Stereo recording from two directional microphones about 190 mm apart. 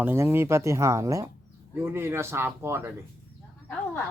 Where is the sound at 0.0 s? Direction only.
10° right (ahead or behind).